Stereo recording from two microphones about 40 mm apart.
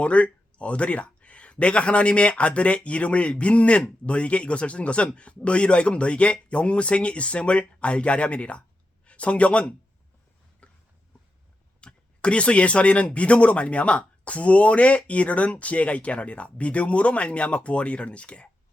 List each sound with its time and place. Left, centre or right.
0.0 s speech: left
10.6 s a sound: left
11.8 s speech: left